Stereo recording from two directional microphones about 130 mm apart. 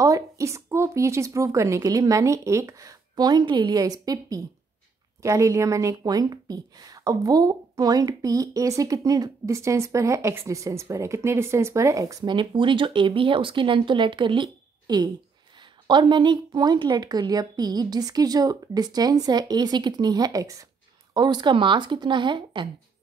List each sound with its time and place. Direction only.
0.0 s a woman's voice: 25° right (ahead or behind)